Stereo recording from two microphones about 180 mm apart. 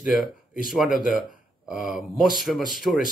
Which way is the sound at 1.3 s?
45° left (ahead or behind).